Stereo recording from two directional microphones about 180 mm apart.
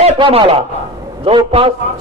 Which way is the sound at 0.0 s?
30° right (ahead or behind).